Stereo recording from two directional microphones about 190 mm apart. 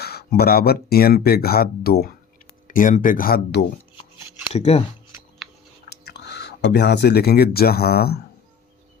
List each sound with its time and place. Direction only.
0.0 s speech: 55° left (ahead or behind)
4.5 s speech: 35° left (ahead or behind)
5.4 s chewing: centre (ahead or behind)
5.9 s speech: 60° left (ahead or behind)